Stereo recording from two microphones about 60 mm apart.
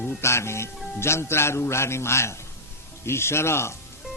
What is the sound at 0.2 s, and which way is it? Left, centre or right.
A man's voice, left.